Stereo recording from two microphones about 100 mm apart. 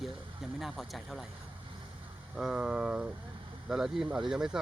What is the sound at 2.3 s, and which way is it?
Speech, 10° right (ahead or behind).